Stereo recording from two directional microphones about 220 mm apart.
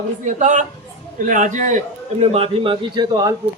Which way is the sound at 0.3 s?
35° right (ahead or behind).